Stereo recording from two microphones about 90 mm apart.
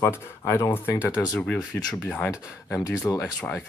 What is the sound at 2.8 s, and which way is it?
Speech, 45° left (ahead or behind).